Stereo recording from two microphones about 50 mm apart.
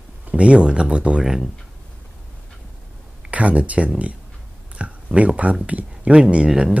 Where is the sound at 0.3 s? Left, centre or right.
Right.